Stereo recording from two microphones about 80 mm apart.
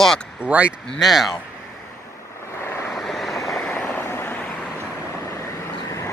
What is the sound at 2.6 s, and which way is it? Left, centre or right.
Vehicle, left.